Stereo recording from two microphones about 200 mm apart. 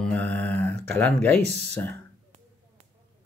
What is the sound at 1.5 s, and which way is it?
Speech, 60° right (ahead or behind).